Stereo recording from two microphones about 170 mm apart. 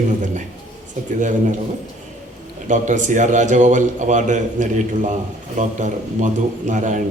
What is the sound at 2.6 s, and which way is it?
A man's voice, 45° right (ahead or behind).